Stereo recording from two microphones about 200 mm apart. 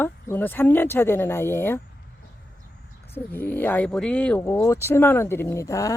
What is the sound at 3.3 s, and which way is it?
Speech, 10° left (ahead or behind).